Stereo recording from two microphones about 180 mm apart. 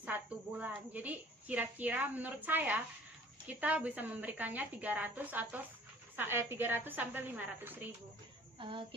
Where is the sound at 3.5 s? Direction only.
10° right (ahead or behind).